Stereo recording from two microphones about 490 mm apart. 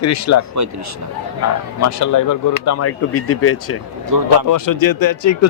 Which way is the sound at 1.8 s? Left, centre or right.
Left.